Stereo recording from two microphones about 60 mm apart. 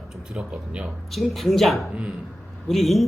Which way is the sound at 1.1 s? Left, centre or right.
Centre.